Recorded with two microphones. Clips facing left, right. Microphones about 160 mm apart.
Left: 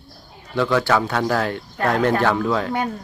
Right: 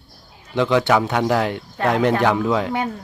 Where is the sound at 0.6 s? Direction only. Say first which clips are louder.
Right 2 dB; 20° right (ahead or behind).